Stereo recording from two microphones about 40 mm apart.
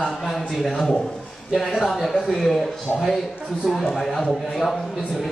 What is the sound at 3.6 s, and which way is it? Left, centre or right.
Speech, centre.